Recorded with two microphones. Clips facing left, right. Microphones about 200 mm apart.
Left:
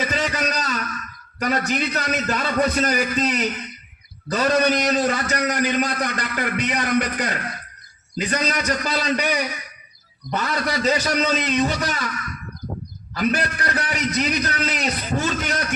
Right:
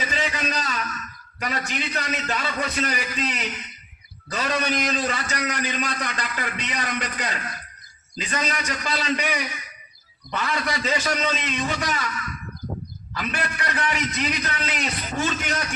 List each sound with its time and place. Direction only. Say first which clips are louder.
0.0 s a sound: left 4 dB; 40° left (ahead or behind)
1.4 s a man's voice: left 7 dB; 40° left (ahead or behind); by 8.4 s 55° left (ahead or behind)
8.4 s a man's voice: left 2 dB; 40° left (ahead or behind)
13.1 s a man's voice: left 7 dB; 40° left (ahead or behind)